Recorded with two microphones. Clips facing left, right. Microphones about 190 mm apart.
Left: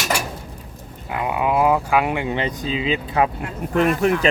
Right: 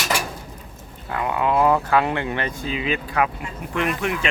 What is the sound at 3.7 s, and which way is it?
Speech, 40° left (ahead or behind).